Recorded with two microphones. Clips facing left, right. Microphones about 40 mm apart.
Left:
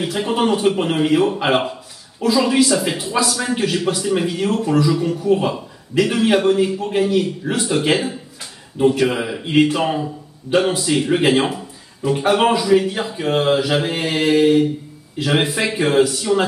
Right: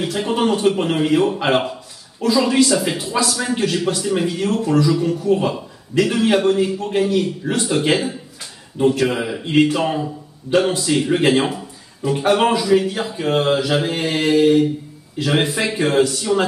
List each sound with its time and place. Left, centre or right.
0.0 s a man's voice: centre